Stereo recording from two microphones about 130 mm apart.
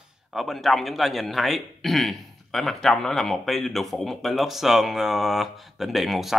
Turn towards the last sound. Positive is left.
turn(degrees=0)  # may be behind; listen again after turning